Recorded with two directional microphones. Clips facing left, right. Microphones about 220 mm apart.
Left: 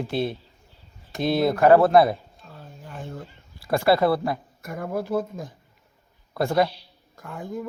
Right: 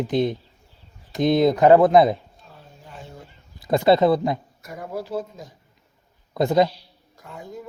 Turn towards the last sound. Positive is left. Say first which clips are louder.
# left 5 dB
turn(degrees=50)  # may be behind; listen again after turning